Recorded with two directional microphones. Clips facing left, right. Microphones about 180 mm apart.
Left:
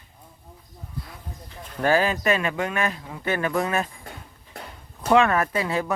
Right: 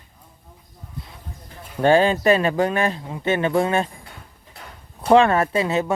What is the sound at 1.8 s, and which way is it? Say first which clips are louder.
Speech: right 5 dB; 30° right (ahead or behind).